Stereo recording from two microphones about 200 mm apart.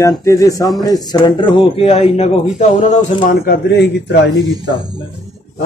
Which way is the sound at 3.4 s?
55° left (ahead or behind).